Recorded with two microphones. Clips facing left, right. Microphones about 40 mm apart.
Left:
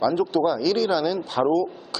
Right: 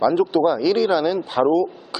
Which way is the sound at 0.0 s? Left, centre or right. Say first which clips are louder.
Right 4 dB; centre.